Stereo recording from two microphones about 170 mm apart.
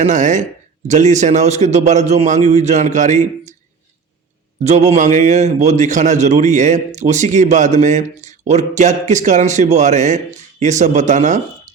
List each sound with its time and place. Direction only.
0.0 s a man's voice: 45° right (ahead or behind)
4.6 s a man's voice: 40° right (ahead or behind)